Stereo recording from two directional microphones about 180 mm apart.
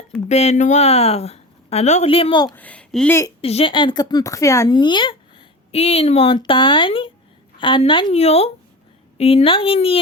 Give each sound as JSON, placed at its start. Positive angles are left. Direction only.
{"t": 0.3, "sound": "a woman's voice", "side_deg": 40}
{"t": 2.6, "sound": "speech", "side_deg": 5}
{"t": 3.4, "sound": "a woman's voice", "side_deg": 30}